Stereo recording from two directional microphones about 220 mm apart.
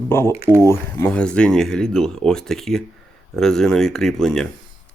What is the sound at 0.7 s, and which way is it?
Speech, 10° left (ahead or behind).